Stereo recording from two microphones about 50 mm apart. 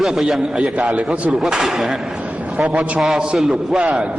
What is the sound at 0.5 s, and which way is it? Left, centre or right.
Speech, right.